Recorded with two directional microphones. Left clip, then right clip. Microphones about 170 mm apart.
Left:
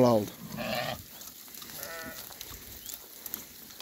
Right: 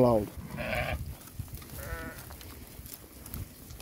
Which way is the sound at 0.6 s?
25° right (ahead or behind).